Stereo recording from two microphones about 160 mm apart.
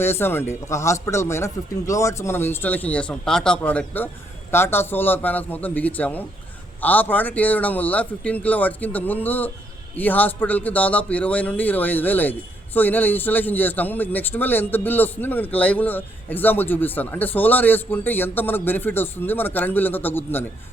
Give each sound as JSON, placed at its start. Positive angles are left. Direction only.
{"t": 0.0, "sound": "a man's voice", "side_deg": 15}